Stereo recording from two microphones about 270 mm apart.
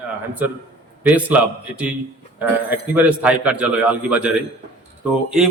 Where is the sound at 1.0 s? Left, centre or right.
Centre.